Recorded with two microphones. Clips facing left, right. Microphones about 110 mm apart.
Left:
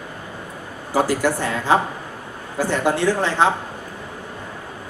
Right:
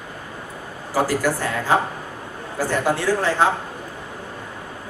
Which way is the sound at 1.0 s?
20° left (ahead or behind).